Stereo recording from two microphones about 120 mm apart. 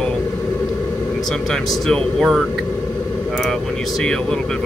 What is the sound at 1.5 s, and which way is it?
Speech, 5° left (ahead or behind).